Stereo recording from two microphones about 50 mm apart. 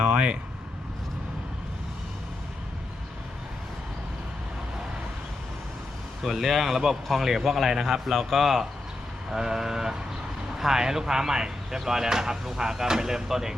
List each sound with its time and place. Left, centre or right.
0.0 s air conditioning: right
6.2 s speech: centre